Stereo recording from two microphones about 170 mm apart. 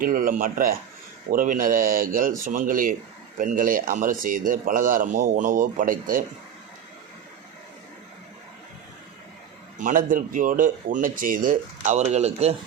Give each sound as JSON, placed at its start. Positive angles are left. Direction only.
{"t": 0.0, "sound": "speech", "side_deg": -55}
{"t": 9.7, "sound": "speech", "side_deg": -50}